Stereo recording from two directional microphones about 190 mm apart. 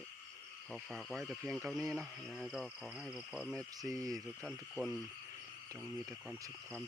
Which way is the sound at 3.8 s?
20° right (ahead or behind).